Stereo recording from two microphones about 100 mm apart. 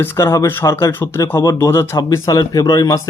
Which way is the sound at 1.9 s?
40° left (ahead or behind).